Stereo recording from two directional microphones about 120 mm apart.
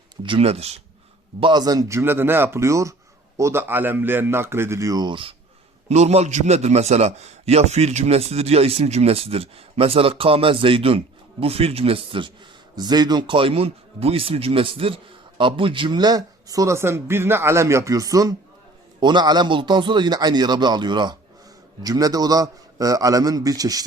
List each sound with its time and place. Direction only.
0.2 s a man's voice: 50° right (ahead or behind)
1.4 s a man's voice: 40° right (ahead or behind)
5.9 s a man's voice: 65° right (ahead or behind); by 12.3 s 45° right (ahead or behind)
12.7 s a man's voice: 35° right (ahead or behind)